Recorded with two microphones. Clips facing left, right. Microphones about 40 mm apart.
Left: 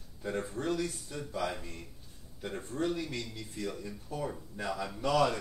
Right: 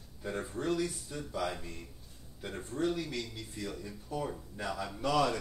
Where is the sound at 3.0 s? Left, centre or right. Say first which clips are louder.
Even; left.